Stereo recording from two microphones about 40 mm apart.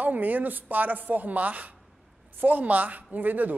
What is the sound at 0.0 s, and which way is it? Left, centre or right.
Speech, right.